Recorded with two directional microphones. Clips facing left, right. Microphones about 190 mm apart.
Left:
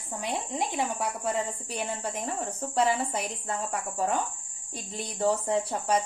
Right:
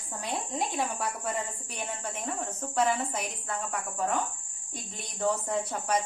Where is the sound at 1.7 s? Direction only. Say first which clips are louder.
Left 4 dB; 35° left (ahead or behind).